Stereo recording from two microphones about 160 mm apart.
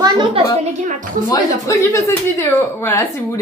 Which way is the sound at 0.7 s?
50° right (ahead or behind).